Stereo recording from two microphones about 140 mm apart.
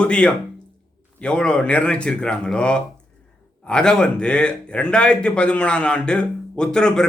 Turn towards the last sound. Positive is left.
turn(degrees=5)  # may be behind; listen again after turning